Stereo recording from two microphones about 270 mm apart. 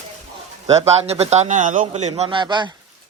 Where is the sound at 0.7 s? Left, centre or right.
Right.